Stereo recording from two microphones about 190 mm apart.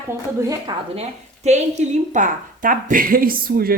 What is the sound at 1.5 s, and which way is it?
A woman's voice, 35° right (ahead or behind).